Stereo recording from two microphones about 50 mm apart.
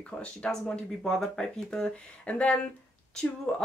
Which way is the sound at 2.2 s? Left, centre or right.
Left.